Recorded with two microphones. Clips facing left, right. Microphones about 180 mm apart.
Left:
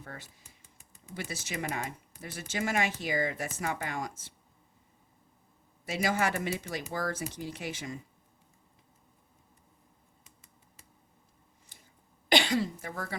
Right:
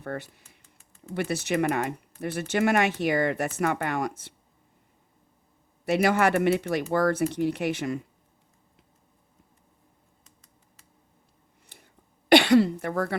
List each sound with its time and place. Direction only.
0.0 s speech: 65° right (ahead or behind)
0.4 s typing: 15° left (ahead or behind)
1.1 s speech: 65° right (ahead or behind)
5.8 s speech: 65° right (ahead or behind)
11.7 s a sound: 65° right (ahead or behind)
12.3 s speech: 65° right (ahead or behind)